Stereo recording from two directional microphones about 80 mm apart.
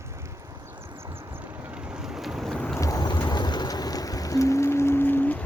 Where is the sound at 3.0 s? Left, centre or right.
Left.